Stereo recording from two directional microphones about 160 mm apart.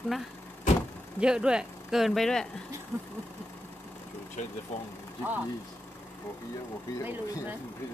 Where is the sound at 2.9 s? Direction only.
20° right (ahead or behind).